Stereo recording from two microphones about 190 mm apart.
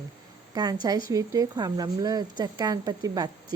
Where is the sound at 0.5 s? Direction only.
20° right (ahead or behind).